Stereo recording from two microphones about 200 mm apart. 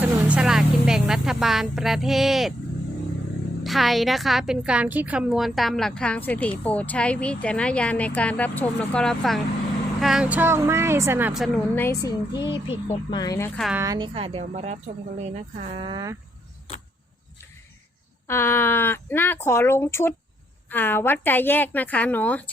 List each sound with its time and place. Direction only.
0.0 s a woman's voice: 5° right (ahead or behind)
3.6 s a woman's voice: centre (ahead or behind); by 13.5 s 15° left (ahead or behind)
13.6 s a woman's voice: centre (ahead or behind)
13.8 s speech: 20° right (ahead or behind)
18.3 s speech: 10° left (ahead or behind)